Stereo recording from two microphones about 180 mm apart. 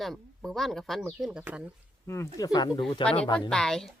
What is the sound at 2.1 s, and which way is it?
Speech, 15° left (ahead or behind).